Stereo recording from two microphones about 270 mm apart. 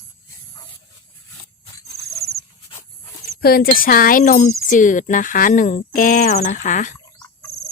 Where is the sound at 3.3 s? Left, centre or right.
Left.